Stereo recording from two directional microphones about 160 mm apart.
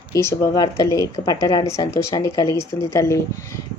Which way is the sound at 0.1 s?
20° left (ahead or behind).